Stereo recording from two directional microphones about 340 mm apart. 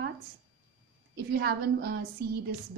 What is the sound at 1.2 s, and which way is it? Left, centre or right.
A woman's voice, right.